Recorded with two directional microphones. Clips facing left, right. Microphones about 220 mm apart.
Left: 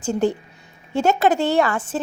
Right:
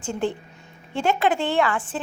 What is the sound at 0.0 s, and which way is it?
A woman's voice, 40° left (ahead or behind).